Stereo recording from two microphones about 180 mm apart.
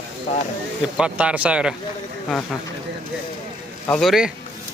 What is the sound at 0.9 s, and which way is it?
Speech, 5° right (ahead or behind).